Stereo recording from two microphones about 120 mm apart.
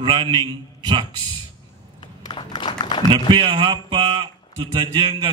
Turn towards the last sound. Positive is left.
turn(degrees=-45)  # may be behind; listen again after turning